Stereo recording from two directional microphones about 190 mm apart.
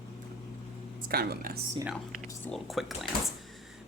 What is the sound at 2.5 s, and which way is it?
Speech, centre (ahead or behind).